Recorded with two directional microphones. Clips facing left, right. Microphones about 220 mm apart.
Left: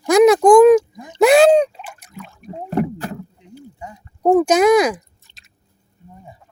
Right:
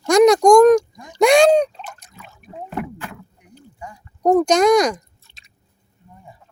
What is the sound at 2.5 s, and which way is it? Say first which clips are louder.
Rowboat: left 7 dB; 35° left (ahead or behind).